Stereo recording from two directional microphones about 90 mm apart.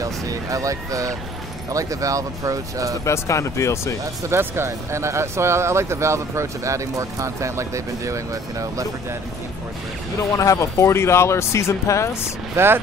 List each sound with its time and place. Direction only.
0.0 s speech: 40° right (ahead or behind)
3.1 s speech: 35° left (ahead or behind)
4.0 s speech: 30° right (ahead or behind)
10.3 s speech: 35° left (ahead or behind)
12.5 s speech: 25° right (ahead or behind)